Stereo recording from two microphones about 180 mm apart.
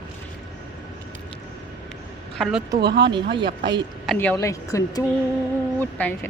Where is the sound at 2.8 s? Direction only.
65° right (ahead or behind).